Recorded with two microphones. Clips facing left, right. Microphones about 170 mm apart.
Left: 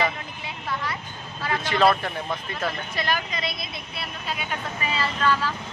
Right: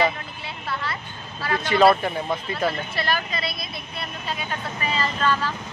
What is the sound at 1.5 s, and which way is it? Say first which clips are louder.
Speech: right 3 dB; centre (ahead or behind).